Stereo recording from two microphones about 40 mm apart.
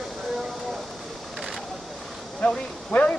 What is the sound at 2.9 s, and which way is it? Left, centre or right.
Speech, left.